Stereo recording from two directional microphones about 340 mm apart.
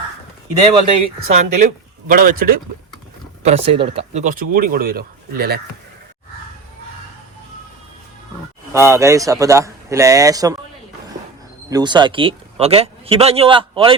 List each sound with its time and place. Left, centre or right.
0.7 s speech: centre
3.4 s speech: centre
8.9 s a man's voice: centre
11.7 s a man's voice: centre